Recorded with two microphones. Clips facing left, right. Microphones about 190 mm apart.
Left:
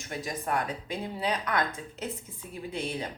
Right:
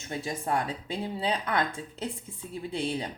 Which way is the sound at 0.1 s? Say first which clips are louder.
Right 1 dB; 25° right (ahead or behind).